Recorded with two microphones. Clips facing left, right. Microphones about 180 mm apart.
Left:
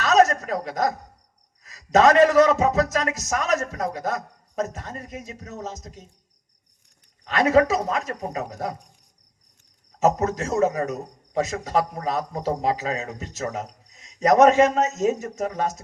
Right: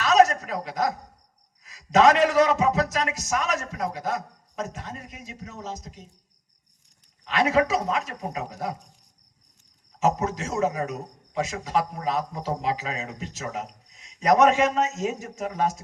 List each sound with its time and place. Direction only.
0.0 s a sound: 40° left (ahead or behind)
1.6 s a man's voice: 40° left (ahead or behind)
7.3 s a man's voice: 40° left (ahead or behind)
10.0 s a man's voice: 40° left (ahead or behind)